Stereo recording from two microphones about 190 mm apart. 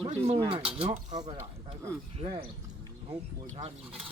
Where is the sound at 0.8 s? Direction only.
25° right (ahead or behind).